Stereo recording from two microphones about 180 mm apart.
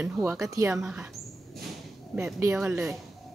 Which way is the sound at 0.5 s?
15° right (ahead or behind).